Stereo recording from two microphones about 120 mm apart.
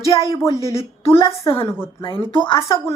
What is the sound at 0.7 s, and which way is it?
Speech, 55° left (ahead or behind).